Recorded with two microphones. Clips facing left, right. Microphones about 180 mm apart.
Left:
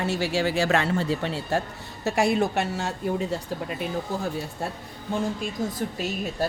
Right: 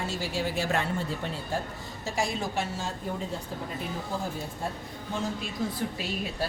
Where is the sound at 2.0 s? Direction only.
65° left (ahead or behind).